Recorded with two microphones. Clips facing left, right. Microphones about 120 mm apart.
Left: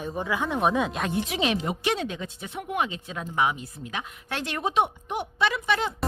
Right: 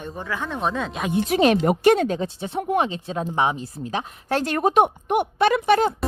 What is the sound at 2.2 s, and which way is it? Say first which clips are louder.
Speech: right 9 dB; 35° right (ahead or behind).